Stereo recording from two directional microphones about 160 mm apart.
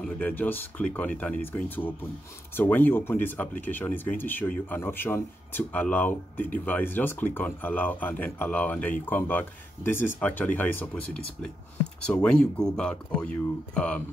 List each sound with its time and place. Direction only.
0.0 s speech: 10° left (ahead or behind)